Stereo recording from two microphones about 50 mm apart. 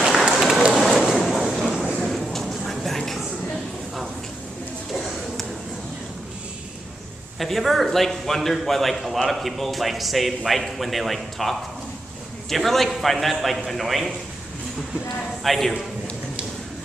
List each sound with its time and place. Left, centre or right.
0.5 s rain: centre
0.7 s a sound: centre
7.3 s a man's voice: centre
15.4 s a man's voice: centre